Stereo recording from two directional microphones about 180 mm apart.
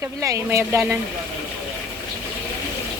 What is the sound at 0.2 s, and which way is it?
Speech, 15° right (ahead or behind).